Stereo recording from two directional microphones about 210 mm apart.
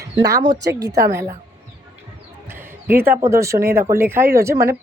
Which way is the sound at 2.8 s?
10° right (ahead or behind).